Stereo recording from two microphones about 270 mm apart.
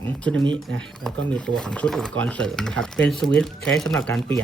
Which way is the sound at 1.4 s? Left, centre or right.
Centre.